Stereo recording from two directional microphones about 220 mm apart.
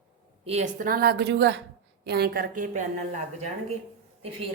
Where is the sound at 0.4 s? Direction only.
30° right (ahead or behind).